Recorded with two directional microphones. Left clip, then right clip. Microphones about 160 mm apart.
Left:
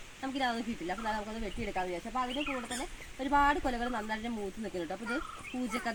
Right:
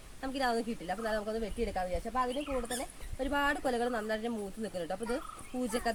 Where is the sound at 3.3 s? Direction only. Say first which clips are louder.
Left 4 dB; 45° right (ahead or behind).